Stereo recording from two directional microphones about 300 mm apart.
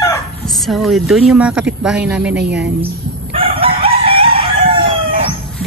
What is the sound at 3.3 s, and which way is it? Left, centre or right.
Chicken, centre.